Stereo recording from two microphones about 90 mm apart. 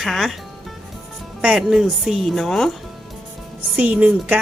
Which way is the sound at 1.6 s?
5° right (ahead or behind).